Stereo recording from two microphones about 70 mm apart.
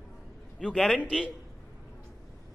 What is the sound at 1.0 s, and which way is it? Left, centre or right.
Speech, centre.